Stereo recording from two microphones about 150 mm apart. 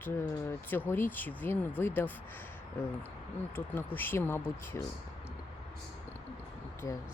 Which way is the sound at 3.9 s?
15° left (ahead or behind).